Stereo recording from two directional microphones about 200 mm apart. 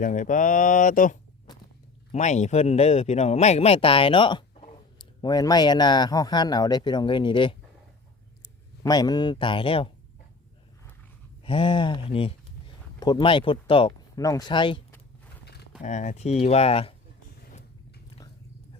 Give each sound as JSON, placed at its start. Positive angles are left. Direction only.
{"t": 0.0, "sound": "speech", "side_deg": 40}
{"t": 11.4, "sound": "speech", "side_deg": 25}
{"t": 15.8, "sound": "speech", "side_deg": 35}